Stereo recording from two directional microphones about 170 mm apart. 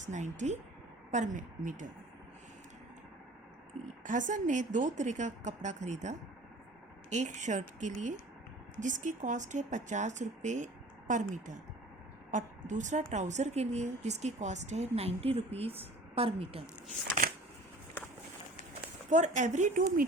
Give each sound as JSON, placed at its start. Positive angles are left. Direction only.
{"t": 0.0, "sound": "a woman's voice", "side_deg": -45}
{"t": 4.0, "sound": "a woman's voice", "side_deg": -50}
{"t": 19.1, "sound": "a woman's voice", "side_deg": -45}